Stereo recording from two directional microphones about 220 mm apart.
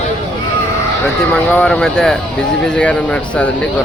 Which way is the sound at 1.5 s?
5° left (ahead or behind).